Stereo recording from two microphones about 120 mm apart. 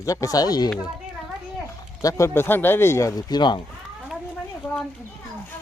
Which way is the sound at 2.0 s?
25° left (ahead or behind).